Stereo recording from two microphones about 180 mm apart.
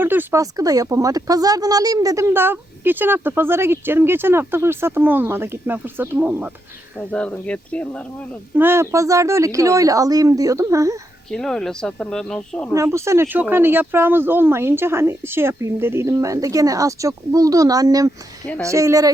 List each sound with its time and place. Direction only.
0.0 s speech: 10° right (ahead or behind)
7.1 s speech: 5° left (ahead or behind)
8.5 s speech: 10° right (ahead or behind)
11.3 s speech: 5° left (ahead or behind)
12.7 s speech: 15° right (ahead or behind)